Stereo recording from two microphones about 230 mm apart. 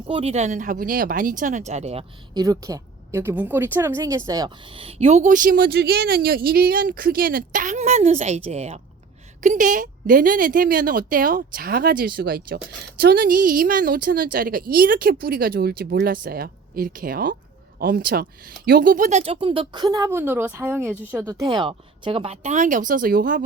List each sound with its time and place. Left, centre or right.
0.1 s speech: right